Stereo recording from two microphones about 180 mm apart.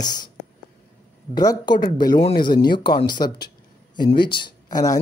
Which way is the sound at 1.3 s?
25° left (ahead or behind).